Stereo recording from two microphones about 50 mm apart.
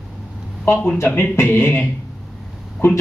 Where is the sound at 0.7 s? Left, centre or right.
Left.